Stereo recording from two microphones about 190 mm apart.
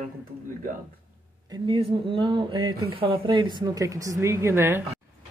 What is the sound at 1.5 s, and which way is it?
Speech, 25° right (ahead or behind).